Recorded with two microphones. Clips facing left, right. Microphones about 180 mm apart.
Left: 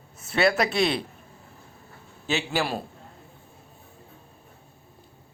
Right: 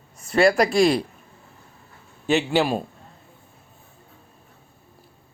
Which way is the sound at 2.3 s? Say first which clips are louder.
Right 7 dB; 15° right (ahead or behind).